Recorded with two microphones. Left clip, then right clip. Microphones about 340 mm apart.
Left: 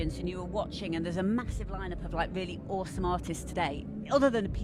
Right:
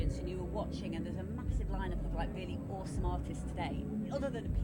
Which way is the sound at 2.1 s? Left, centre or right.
Left.